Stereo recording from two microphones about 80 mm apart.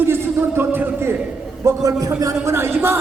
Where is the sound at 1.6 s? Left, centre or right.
Right.